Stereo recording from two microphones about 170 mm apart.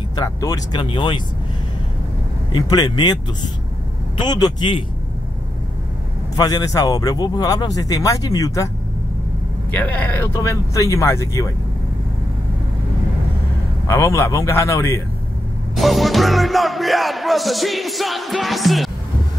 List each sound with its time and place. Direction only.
0.1 s speech: 20° left (ahead or behind)
2.5 s speech: 25° left (ahead or behind)
4.2 s speech: 25° left (ahead or behind)
6.3 s speech: 20° left (ahead or behind)
9.7 s speech: 10° left (ahead or behind)
13.8 s speech: 15° left (ahead or behind)
15.7 s music: centre (ahead or behind)